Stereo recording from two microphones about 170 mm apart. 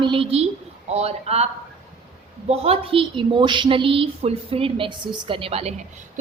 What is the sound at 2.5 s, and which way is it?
A woman's voice, 35° right (ahead or behind).